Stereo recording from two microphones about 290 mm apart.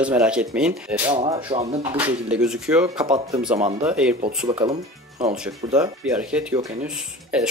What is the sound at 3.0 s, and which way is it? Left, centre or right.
Speech, centre.